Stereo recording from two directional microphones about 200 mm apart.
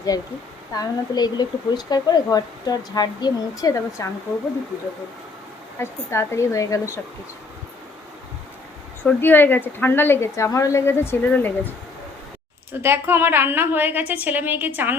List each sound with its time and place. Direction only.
0.7 s a woman's voice: 20° left (ahead or behind)
5.8 s a woman's voice: 15° left (ahead or behind)
9.0 s a woman's voice: 10° left (ahead or behind)
12.8 s a woman's voice: 10° right (ahead or behind)